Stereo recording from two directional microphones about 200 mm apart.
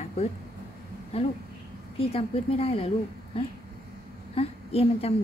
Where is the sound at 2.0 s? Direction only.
30° left (ahead or behind).